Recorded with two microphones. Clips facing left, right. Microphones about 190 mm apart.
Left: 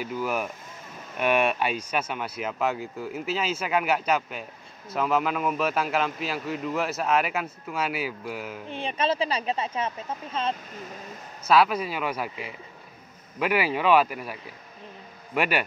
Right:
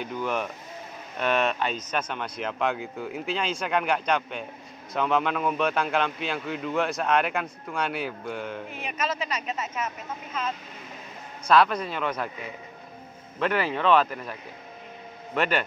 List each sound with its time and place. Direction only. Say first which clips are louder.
0.0 s a man's voice: left 1 dB; 5° left (ahead or behind)
8.6 s speech: left 4 dB; 30° left (ahead or behind)
11.4 s speech: even; 5° left (ahead or behind)